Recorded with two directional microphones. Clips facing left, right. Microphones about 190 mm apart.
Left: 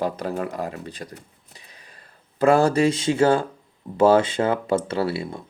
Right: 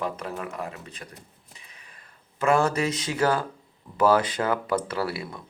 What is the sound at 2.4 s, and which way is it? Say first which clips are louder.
Speech: left 6 dB; 30° left (ahead or behind).